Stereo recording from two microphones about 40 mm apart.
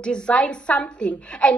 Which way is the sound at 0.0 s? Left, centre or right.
Left.